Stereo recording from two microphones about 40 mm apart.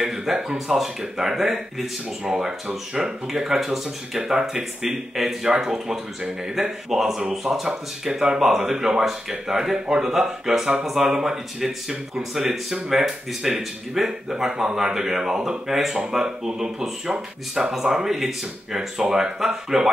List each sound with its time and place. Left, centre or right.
0.0 s speech: centre